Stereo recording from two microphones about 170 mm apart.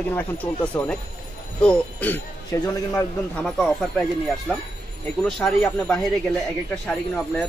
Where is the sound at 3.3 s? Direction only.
Centre (ahead or behind).